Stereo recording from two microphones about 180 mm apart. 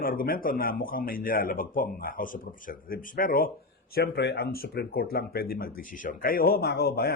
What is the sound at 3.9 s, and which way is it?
Speech, 65° left (ahead or behind).